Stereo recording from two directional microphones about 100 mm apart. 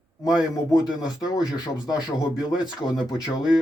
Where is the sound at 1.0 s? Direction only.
40° left (ahead or behind).